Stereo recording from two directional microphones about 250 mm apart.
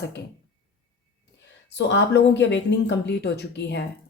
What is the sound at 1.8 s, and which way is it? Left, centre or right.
Speech, left.